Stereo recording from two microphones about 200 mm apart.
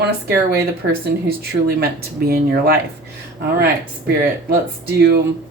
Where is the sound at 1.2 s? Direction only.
50° right (ahead or behind).